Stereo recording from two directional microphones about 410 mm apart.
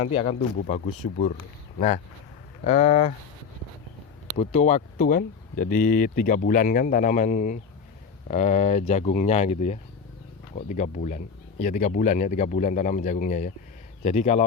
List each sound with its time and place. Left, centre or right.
0.0 s a man's voice: centre
2.6 s a man's voice: centre
4.4 s a man's voice: centre